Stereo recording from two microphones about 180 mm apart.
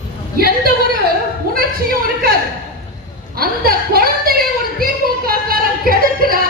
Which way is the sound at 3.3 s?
55° right (ahead or behind).